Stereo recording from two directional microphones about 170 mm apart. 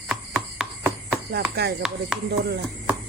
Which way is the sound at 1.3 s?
70° right (ahead or behind).